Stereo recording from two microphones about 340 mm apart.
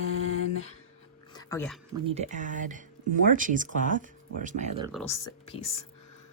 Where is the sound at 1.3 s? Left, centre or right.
Centre.